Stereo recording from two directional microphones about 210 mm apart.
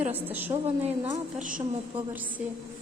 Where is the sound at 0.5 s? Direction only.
30° right (ahead or behind).